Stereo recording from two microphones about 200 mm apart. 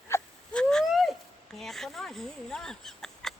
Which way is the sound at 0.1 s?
5° left (ahead or behind).